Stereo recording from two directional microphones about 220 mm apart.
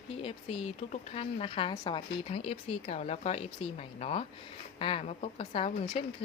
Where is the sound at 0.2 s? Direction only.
25° left (ahead or behind).